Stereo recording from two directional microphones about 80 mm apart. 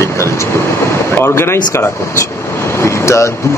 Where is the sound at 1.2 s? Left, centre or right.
Left.